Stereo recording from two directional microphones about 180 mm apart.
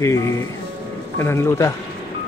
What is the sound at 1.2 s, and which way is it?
Speech, 15° left (ahead or behind).